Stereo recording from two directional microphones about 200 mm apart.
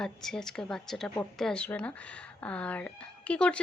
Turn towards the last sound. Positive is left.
turn(degrees=5)  # may be behind; listen again after turning